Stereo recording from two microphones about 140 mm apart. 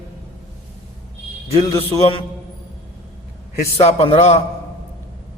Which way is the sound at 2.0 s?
40° left (ahead or behind).